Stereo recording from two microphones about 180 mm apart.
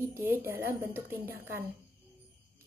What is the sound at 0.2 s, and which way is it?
A woman's voice, 10° right (ahead or behind).